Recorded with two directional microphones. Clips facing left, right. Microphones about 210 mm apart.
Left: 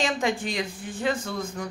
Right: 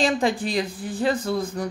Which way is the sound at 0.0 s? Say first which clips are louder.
Right 4 dB; 35° right (ahead or behind).